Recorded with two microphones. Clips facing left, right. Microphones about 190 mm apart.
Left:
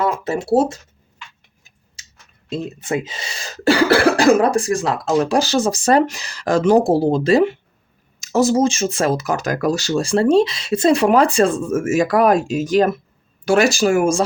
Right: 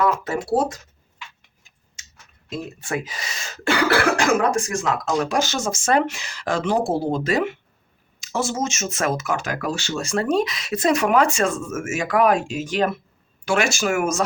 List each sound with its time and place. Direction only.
0.3 s speech: 25° left (ahead or behind)
2.5 s speech: 20° left (ahead or behind)